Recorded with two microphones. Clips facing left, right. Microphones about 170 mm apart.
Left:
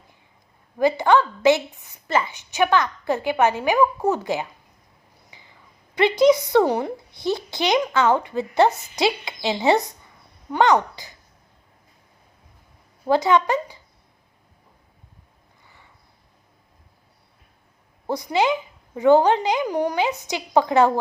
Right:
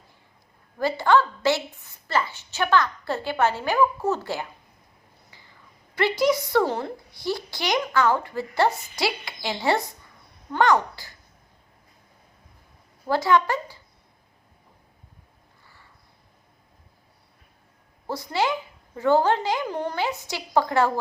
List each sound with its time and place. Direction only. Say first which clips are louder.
0.8 s a woman's voice: left 3 dB; 20° left (ahead or behind)
5.3 s a sound: left 4 dB; 20° left (ahead or behind)
5.9 s a woman's voice: left 6 dB; 20° left (ahead or behind)
13.1 s a woman's voice: left 3 dB; 20° left (ahead or behind)
18.0 s a woman's voice: left 4 dB; 20° left (ahead or behind)